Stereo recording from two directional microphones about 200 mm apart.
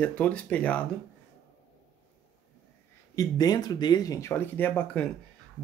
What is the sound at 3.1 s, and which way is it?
Speech, 20° left (ahead or behind).